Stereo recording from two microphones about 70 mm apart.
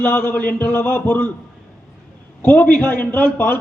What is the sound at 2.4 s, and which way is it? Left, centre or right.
A man's voice, centre.